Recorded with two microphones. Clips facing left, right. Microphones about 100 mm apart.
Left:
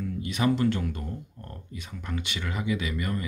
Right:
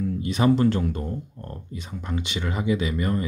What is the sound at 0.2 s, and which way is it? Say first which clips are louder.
Speech: right 5 dB; 30° right (ahead or behind).